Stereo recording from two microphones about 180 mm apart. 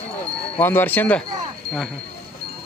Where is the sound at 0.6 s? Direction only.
10° left (ahead or behind).